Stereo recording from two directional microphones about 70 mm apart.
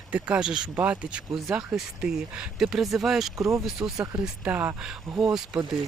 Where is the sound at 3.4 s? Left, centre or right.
Right.